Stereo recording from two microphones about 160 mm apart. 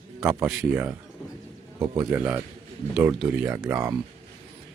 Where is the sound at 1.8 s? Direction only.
20° right (ahead or behind).